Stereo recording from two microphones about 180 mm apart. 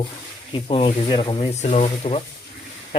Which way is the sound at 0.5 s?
30° left (ahead or behind).